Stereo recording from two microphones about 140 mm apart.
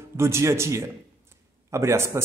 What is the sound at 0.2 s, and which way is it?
A man's voice, 20° right (ahead or behind).